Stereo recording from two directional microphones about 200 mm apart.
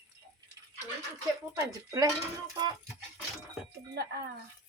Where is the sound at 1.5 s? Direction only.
15° right (ahead or behind).